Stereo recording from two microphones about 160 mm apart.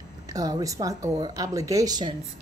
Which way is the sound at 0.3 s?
20° right (ahead or behind).